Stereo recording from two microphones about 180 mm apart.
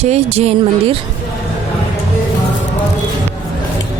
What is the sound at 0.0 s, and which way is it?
Speech, 35° right (ahead or behind).